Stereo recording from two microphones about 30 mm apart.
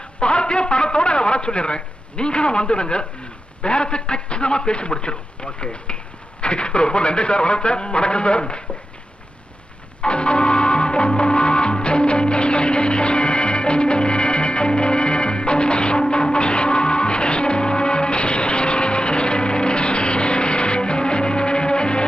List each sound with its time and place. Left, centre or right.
0.2 s a man's voice: left
10.0 s music: left